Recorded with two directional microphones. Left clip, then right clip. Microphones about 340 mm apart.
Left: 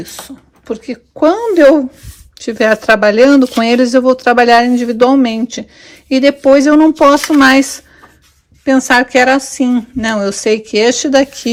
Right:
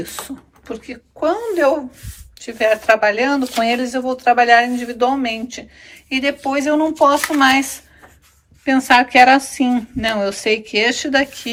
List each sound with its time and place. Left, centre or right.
0.0 s speech: centre
0.7 s speech: centre